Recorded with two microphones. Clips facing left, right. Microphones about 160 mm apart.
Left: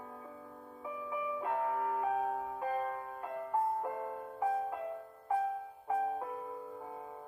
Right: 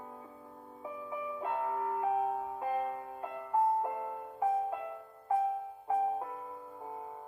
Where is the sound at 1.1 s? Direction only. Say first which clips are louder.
Left 1 dB; 30° right (ahead or behind).